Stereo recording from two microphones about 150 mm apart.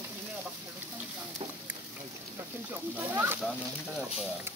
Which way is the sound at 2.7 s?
10° right (ahead or behind).